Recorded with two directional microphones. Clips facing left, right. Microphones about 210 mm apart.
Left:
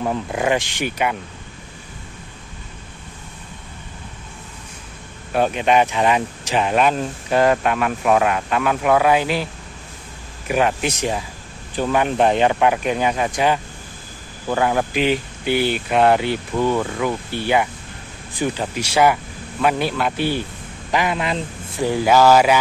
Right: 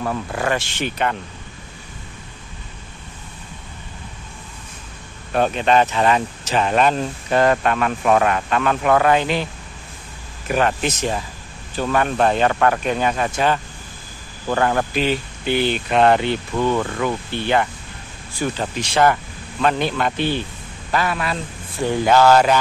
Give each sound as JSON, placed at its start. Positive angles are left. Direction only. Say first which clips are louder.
{"t": 0.0, "sound": "speech", "louder": "left 2 dB", "side_deg": 15}
{"t": 5.3, "sound": "speech", "louder": "even", "side_deg": 10}
{"t": 10.5, "sound": "a man's voice", "louder": "even", "side_deg": 10}
{"t": 21.8, "sound": "speech", "louder": "even", "side_deg": 10}